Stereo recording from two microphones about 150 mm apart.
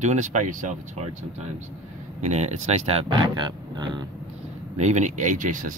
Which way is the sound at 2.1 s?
50° right (ahead or behind).